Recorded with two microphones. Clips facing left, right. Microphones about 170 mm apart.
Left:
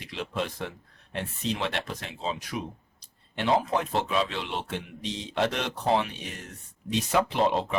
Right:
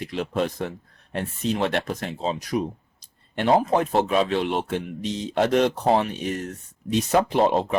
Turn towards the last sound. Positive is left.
turn(degrees=-45)  # may be behind; listen again after turning